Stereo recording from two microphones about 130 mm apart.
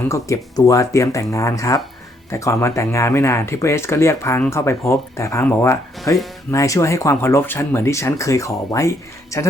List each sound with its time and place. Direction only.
0.1 s speech: 25° left (ahead or behind)